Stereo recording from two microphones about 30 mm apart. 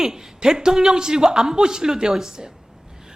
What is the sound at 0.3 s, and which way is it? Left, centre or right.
A man's voice, right.